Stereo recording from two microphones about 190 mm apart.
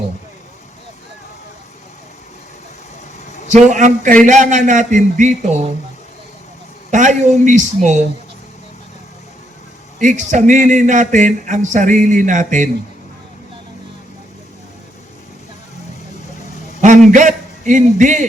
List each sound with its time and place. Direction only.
3.5 s a man's voice: 40° right (ahead or behind)
6.9 s a man's voice: 40° right (ahead or behind)
10.0 s a man's voice: 40° right (ahead or behind)
17.1 s a man's voice: 40° right (ahead or behind)